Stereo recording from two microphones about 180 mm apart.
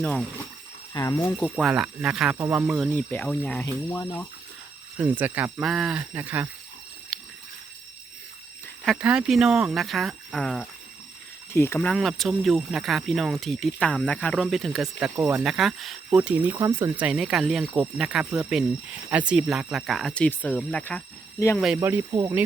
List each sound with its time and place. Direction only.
0.0 s speech: 5° left (ahead or behind)
0.9 s speech: 15° left (ahead or behind)
1.4 s speech: centre (ahead or behind)
2.6 s speech: centre (ahead or behind); by 4.3 s 15° left (ahead or behind)
4.9 s speech: 10° right (ahead or behind)
7.1 s a sound: centre (ahead or behind)
8.6 s speech: centre (ahead or behind)
11.5 s speech: 15° left (ahead or behind)
21.8 s speech: 15° right (ahead or behind)